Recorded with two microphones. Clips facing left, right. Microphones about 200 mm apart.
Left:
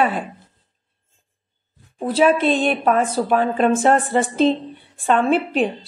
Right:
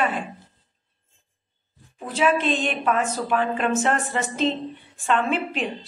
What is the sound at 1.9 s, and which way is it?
Speech, 35° left (ahead or behind).